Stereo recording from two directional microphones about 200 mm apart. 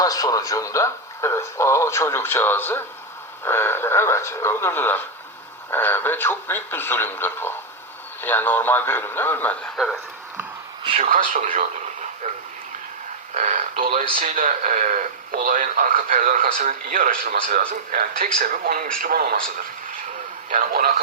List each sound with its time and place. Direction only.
0.0 s speech: 20° left (ahead or behind); by 10.0 s centre (ahead or behind)
10.8 s speech: 30° right (ahead or behind)
11.1 s speech: 40° right (ahead or behind)
13.3 s speech: 40° right (ahead or behind)